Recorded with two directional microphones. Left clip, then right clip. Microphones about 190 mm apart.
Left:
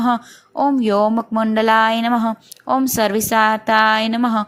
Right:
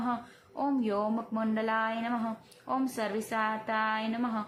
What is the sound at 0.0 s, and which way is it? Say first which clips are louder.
Speech: left 15 dB; 40° left (ahead or behind).